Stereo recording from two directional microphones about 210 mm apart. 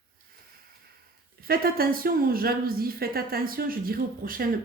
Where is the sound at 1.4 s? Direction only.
45° right (ahead or behind).